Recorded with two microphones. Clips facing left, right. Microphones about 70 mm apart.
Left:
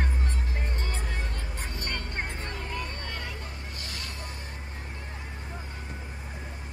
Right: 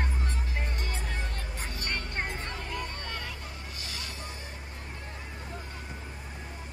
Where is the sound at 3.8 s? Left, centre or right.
Left.